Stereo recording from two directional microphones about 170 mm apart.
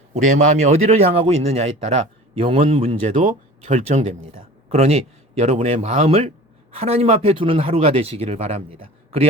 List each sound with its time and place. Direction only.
0.1 s speech: 45° right (ahead or behind)